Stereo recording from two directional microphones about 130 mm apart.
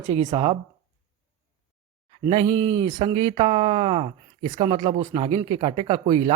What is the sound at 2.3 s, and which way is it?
A man's voice, 45° right (ahead or behind).